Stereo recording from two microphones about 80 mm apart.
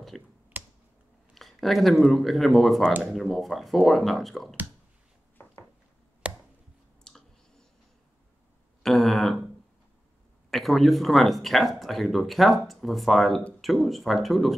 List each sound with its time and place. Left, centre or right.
0.1 s speech: centre
0.5 s computer keyboard: right
1.3 s speech: centre
6.2 s a sound: centre
7.1 s clicking: centre
8.8 s a sound: centre
10.5 s speech: centre